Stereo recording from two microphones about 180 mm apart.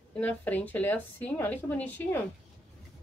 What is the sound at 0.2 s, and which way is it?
A woman's voice, 10° left (ahead or behind).